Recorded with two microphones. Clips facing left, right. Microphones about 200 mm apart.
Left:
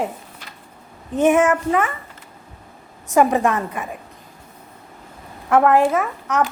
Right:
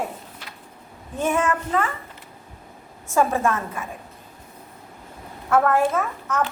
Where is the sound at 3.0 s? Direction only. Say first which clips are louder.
Left 5 dB; 15° left (ahead or behind).